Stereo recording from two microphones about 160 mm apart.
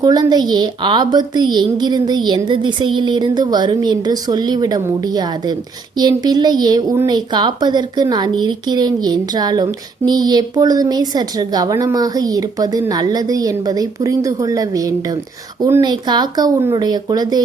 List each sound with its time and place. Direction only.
0.0 s a woman's voice: 25° right (ahead or behind)